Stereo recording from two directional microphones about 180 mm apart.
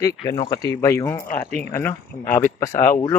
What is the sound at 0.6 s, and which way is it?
Speech, 15° left (ahead or behind).